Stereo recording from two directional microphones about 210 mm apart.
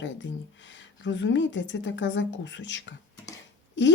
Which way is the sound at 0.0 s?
60° left (ahead or behind).